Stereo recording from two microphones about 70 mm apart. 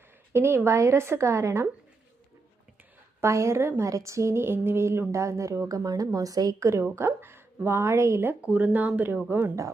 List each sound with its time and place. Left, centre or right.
0.3 s speech: right
3.2 s speech: right
3.8 s speech: right
6.9 s speech: right
8.5 s speech: right